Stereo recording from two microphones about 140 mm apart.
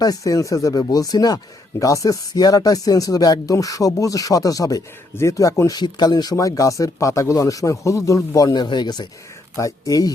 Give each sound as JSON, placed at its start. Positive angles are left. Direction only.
{"t": 0.0, "sound": "speech", "side_deg": 25}